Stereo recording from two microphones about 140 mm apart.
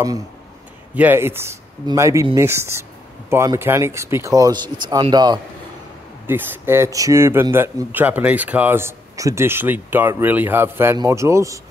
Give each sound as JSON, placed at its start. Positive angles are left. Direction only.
{"t": 0.9, "sound": "speech", "side_deg": -15}
{"t": 6.2, "sound": "speech", "side_deg": -15}